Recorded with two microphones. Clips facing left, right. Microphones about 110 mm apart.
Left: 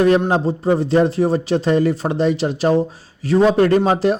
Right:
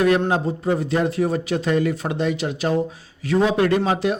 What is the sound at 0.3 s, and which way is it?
A man's voice, 30° left (ahead or behind).